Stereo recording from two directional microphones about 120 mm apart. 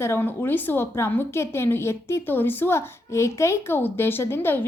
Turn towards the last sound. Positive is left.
turn(degrees=20)  # may be behind; listen again after turning